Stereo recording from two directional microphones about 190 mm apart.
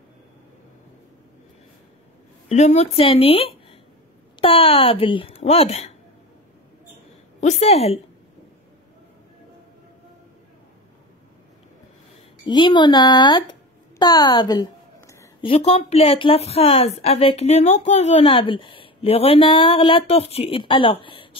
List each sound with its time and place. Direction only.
2.5 s a woman's voice: 35° left (ahead or behind)
7.3 s a woman's voice: 35° left (ahead or behind)
12.4 s speech: 25° left (ahead or behind)
15.0 s a sound: 15° left (ahead or behind)
15.4 s a woman's voice: 30° left (ahead or behind)